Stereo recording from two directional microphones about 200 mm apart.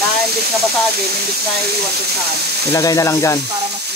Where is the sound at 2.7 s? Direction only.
15° left (ahead or behind).